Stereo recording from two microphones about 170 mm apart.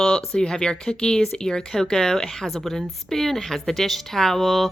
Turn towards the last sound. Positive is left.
turn(degrees=0)  # may be behind; listen again after turning